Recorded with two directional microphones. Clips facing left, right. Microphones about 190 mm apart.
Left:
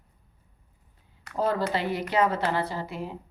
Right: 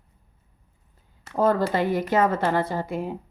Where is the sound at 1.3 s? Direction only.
50° right (ahead or behind).